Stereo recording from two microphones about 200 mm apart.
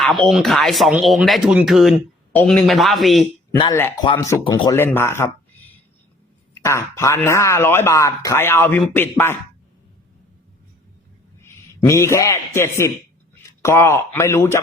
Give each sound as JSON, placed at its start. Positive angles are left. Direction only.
{"t": 0.3, "sound": "speech", "side_deg": 0}
{"t": 3.7, "sound": "speech", "side_deg": 10}
{"t": 4.0, "sound": "speech", "side_deg": 25}
{"t": 4.7, "sound": "speech", "side_deg": 10}
{"t": 6.6, "sound": "speech", "side_deg": 15}
{"t": 11.4, "sound": "a man's voice", "side_deg": 15}